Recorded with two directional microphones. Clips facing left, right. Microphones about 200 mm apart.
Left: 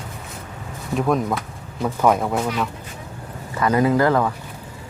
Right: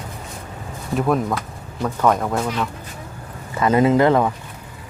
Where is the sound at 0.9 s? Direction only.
Centre (ahead or behind).